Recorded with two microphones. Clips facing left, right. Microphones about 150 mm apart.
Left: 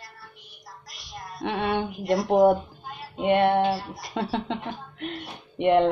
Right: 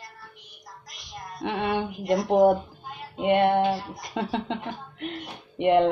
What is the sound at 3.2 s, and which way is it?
Mantra, 15° right (ahead or behind).